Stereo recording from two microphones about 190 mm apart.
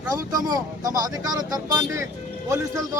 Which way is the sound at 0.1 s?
20° right (ahead or behind).